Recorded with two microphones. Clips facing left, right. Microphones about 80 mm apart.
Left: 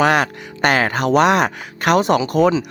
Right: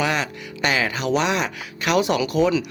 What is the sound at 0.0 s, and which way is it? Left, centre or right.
Speech, left.